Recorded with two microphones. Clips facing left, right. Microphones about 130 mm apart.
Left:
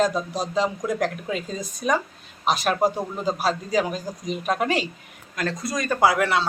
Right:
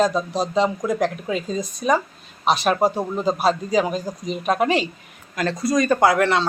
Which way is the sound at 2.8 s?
35° right (ahead or behind).